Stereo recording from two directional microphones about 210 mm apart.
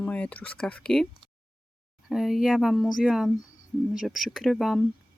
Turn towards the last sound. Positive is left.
turn(degrees=0)  # may be behind; listen again after turning